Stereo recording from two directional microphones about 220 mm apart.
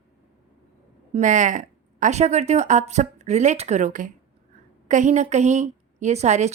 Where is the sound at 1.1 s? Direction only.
35° right (ahead or behind).